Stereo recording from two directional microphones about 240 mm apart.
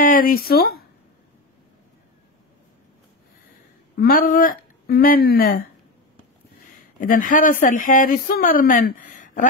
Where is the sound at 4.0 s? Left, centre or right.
Left.